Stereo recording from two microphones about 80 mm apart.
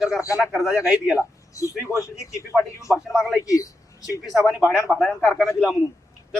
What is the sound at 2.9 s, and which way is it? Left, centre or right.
Speech, centre.